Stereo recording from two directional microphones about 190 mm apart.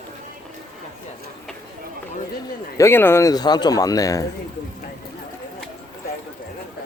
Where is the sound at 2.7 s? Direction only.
15° left (ahead or behind).